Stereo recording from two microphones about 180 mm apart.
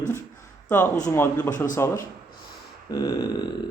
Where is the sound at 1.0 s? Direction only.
15° left (ahead or behind).